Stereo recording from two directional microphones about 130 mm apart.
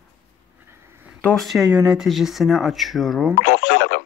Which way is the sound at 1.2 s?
5° left (ahead or behind).